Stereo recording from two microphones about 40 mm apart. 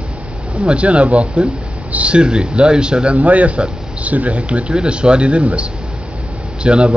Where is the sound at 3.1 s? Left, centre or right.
Right.